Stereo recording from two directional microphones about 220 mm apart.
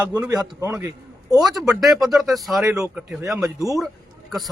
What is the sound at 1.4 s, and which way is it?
Speech, centre (ahead or behind).